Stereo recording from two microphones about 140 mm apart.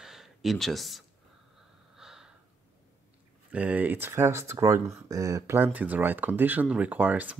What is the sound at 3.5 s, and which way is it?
Speech, 10° right (ahead or behind).